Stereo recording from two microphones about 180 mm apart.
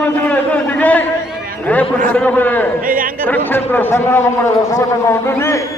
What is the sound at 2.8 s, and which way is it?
Speech, 50° right (ahead or behind).